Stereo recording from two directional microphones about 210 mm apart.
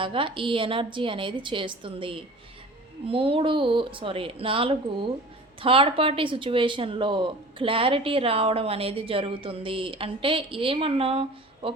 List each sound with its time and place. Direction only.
0.0 s speech: 25° right (ahead or behind)